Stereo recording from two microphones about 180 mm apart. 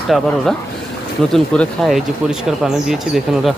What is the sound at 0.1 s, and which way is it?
Speech, centre (ahead or behind).